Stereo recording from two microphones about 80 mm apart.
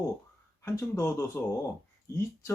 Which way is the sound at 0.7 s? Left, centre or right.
Left.